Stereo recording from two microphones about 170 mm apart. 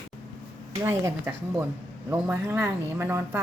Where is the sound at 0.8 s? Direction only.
15° right (ahead or behind).